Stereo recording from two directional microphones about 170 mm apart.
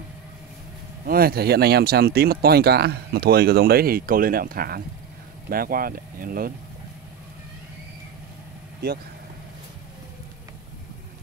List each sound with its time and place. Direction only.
1.0 s speech: 60° right (ahead or behind)